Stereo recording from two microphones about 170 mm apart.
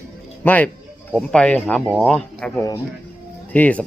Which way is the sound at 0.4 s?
10° left (ahead or behind).